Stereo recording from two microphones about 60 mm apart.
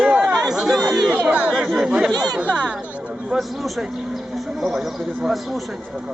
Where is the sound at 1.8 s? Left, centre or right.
Centre.